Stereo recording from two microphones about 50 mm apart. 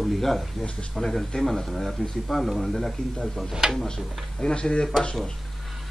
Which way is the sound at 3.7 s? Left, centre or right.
Centre.